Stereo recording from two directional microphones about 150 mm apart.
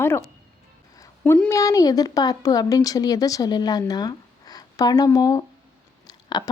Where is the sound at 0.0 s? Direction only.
15° left (ahead or behind).